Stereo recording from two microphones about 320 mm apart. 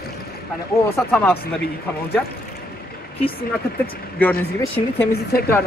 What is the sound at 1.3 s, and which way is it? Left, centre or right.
Speech, left.